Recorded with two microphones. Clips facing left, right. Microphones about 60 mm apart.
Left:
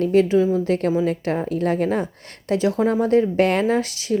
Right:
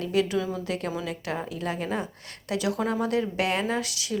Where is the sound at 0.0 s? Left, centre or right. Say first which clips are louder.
Left 9 dB; left.